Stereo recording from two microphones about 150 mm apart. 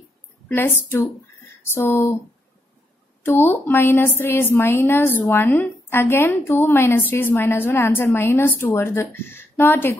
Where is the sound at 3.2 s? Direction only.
15° left (ahead or behind).